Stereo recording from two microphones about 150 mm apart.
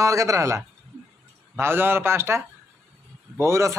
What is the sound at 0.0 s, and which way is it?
A man's voice, 20° right (ahead or behind).